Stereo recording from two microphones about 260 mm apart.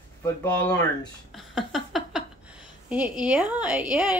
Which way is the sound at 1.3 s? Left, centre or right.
Centre.